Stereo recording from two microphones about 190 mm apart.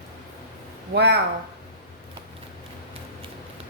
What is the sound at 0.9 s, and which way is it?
Speech, 60° right (ahead or behind).